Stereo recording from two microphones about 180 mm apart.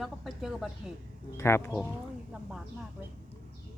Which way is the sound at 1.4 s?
15° left (ahead or behind).